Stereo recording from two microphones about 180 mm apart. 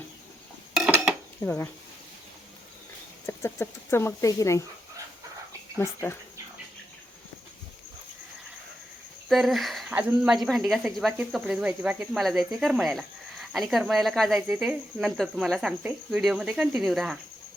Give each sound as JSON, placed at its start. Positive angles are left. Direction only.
{"t": 0.7, "sound": "dishes", "side_deg": -5}
{"t": 1.4, "sound": "speech", "side_deg": 10}
{"t": 3.2, "sound": "speech", "side_deg": 15}
{"t": 5.7, "sound": "speech", "side_deg": 15}
{"t": 9.3, "sound": "speech", "side_deg": 0}